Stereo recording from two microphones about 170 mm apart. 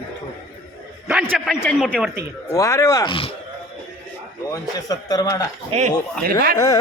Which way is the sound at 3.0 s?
30° left (ahead or behind).